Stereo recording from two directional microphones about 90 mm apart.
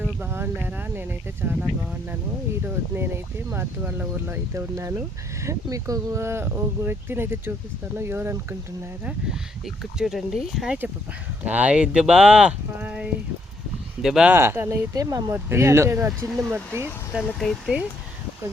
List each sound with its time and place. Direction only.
0.0 s a sound: 20° right (ahead or behind)
1.5 s a sound: 10° right (ahead or behind)
2.6 s speech: 25° right (ahead or behind)
10.0 s speech: 5° right (ahead or behind)
11.4 s speech: 15° right (ahead or behind)
14.0 s speech: 5° right (ahead or behind)
14.3 s speech: 25° right (ahead or behind)
14.9 s speech: 45° right (ahead or behind)
15.3 s speech: 30° right (ahead or behind)
17.1 s speech: 10° right (ahead or behind)